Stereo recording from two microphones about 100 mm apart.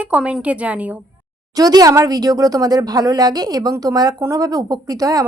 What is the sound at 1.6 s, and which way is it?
A woman's voice, 40° right (ahead or behind).